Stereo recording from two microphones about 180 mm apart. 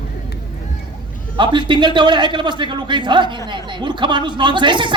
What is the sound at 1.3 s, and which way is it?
A man's voice, 25° right (ahead or behind).